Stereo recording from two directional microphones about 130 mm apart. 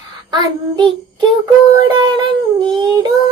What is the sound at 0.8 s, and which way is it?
Child singing, 40° right (ahead or behind).